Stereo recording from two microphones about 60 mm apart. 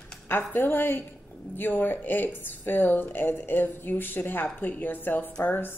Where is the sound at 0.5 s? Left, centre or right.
Left.